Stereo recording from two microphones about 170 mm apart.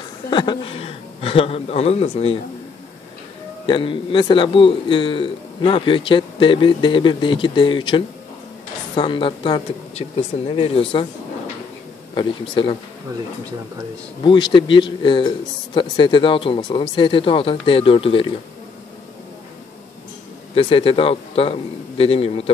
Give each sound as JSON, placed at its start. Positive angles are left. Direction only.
{"t": 0.3, "sound": "a man's voice", "side_deg": 25}
{"t": 3.6, "sound": "a man's voice", "side_deg": 30}
{"t": 12.1, "sound": "a man's voice", "side_deg": 30}
{"t": 14.2, "sound": "a man's voice", "side_deg": 25}
{"t": 20.5, "sound": "a man's voice", "side_deg": 30}